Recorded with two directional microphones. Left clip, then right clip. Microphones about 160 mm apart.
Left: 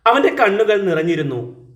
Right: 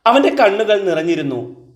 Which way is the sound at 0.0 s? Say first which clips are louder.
Right 2 dB; 25° right (ahead or behind).